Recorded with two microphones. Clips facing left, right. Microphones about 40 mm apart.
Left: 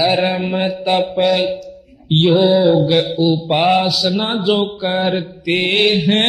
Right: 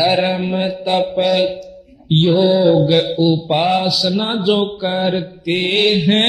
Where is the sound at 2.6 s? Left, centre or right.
Centre.